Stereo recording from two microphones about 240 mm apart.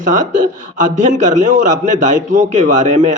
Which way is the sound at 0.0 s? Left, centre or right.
Right.